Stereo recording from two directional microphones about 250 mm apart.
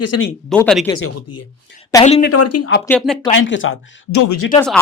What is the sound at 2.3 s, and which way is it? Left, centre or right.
Speech, left.